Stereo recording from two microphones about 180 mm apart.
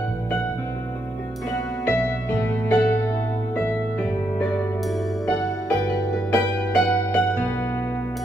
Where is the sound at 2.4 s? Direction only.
15° left (ahead or behind).